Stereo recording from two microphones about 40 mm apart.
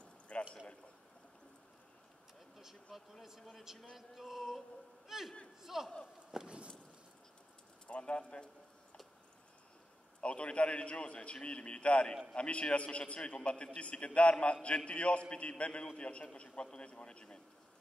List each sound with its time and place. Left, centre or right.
0.3 s a sound: left
2.6 s speech: centre
5.0 s a sound: centre
5.6 s a man's voice: centre
6.4 s clip-clop: right
7.8 s a man's voice: left
10.2 s a man's voice: left